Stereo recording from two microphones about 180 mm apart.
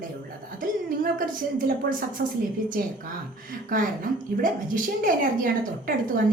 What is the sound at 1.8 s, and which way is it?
A woman's voice, 50° right (ahead or behind).